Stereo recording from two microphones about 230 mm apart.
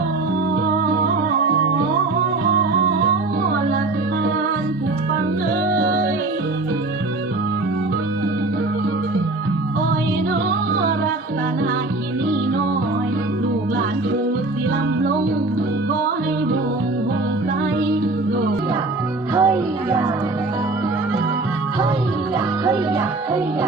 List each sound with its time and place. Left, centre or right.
5.7 s music: right
19.3 s music: centre